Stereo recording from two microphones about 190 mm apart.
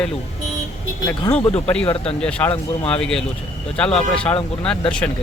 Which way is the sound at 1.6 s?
5° left (ahead or behind).